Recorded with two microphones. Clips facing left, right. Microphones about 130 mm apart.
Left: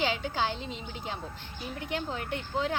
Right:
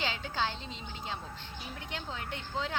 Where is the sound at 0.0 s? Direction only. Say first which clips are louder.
Left 4 dB; 10° left (ahead or behind).